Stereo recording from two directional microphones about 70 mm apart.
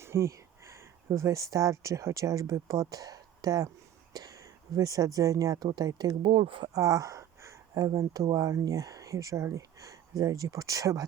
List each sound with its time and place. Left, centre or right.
0.0 s speech: right
5.7 s speech: right
6.7 s a sound: right
7.7 s speech: right